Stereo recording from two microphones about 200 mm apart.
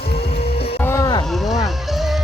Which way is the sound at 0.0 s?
50° left (ahead or behind).